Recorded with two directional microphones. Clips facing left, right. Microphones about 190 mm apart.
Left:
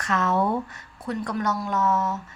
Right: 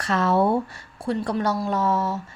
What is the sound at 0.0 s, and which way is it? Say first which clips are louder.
A woman's voice: right 3 dB; 30° right (ahead or behind).